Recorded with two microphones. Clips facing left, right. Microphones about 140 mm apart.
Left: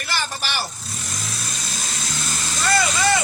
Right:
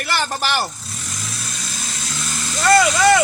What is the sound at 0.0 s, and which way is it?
Speech, 60° right (ahead or behind).